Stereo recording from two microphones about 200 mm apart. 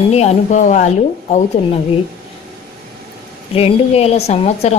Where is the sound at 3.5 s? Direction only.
30° left (ahead or behind).